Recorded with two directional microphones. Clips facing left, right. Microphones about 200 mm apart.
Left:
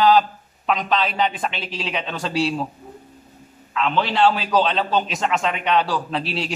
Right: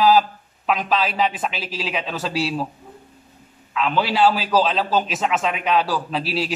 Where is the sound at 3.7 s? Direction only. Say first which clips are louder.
Even; 5° right (ahead or behind).